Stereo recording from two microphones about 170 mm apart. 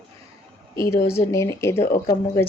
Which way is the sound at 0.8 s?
15° left (ahead or behind).